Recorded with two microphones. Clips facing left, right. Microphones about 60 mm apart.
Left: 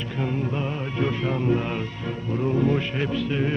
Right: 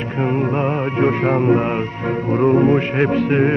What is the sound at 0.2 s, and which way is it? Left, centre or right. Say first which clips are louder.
Music: right 9 dB; right.